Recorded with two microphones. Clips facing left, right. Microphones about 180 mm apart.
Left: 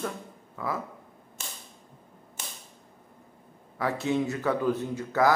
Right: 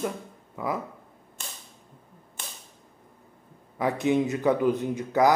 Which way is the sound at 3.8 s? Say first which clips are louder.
Right 3 dB; 15° right (ahead or behind).